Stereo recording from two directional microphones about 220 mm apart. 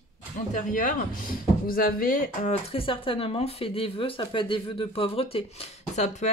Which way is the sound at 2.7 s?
25° left (ahead or behind).